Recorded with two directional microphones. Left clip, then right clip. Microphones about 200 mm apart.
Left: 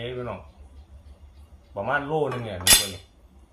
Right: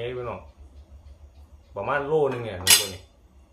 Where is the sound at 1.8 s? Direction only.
15° right (ahead or behind).